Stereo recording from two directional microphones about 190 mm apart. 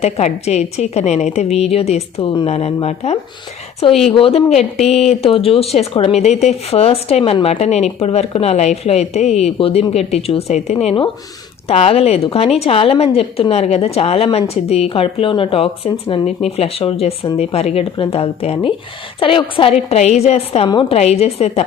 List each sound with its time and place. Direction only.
0.0 s speech: 35° left (ahead or behind)